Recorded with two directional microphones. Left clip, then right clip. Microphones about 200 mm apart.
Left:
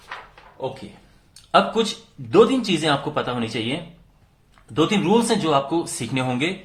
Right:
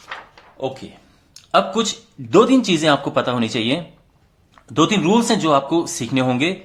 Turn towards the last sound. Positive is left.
turn(degrees=-20)  # may be behind; listen again after turning